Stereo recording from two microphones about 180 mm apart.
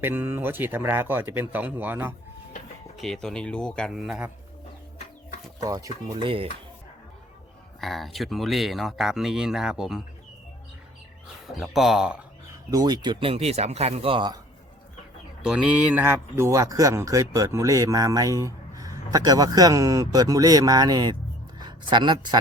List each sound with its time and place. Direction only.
0.0 s speech: 10° right (ahead or behind)
3.0 s speech: centre (ahead or behind)
5.5 s speech: 20° right (ahead or behind)
6.1 s speech: 30° right (ahead or behind)
7.8 s speech: centre (ahead or behind)
11.4 s speech: centre (ahead or behind)
12.7 s speech: 20° right (ahead or behind)
15.4 s a man's voice: 5° right (ahead or behind); by 22.4 s 25° right (ahead or behind)